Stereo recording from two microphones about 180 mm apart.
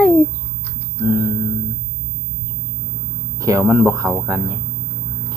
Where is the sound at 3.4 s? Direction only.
15° right (ahead or behind).